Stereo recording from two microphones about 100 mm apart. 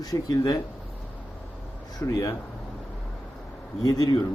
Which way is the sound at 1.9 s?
35° left (ahead or behind).